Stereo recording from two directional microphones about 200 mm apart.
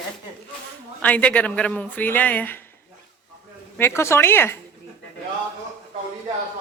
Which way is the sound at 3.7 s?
10° left (ahead or behind).